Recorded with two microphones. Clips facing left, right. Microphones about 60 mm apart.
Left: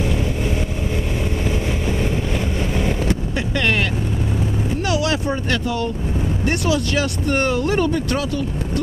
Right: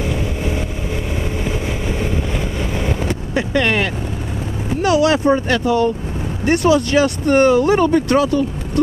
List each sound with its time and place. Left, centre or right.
1.4 s vehicle: centre
3.3 s speech: centre
5.3 s speech: centre
6.6 s speech: right
7.0 s speech: centre
7.9 s speech: right